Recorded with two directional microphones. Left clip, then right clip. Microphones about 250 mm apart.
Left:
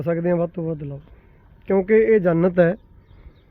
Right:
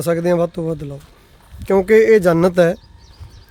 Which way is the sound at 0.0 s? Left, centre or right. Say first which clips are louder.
Right 5 dB; centre.